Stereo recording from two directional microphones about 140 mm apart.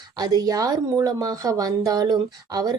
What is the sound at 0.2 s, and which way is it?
A woman's voice, 30° right (ahead or behind).